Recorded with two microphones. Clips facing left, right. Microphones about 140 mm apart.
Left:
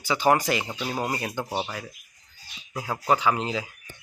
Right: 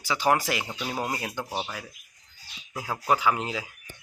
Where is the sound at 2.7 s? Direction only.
Centre (ahead or behind).